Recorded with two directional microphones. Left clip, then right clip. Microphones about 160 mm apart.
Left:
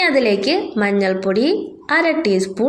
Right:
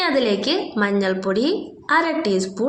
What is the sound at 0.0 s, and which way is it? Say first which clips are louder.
A woman's voice: left 4 dB; 20° left (ahead or behind).